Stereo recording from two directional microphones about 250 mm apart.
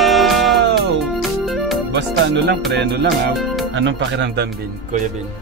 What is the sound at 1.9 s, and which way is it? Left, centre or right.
Speech, right.